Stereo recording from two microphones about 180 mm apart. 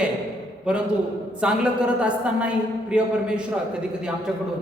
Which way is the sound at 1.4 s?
5° right (ahead or behind).